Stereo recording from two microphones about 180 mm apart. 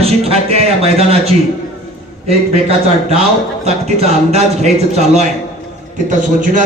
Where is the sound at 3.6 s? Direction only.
35° right (ahead or behind).